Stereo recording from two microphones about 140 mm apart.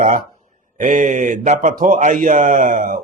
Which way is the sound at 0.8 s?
65° right (ahead or behind).